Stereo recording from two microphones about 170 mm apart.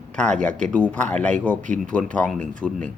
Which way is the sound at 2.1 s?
5° left (ahead or behind).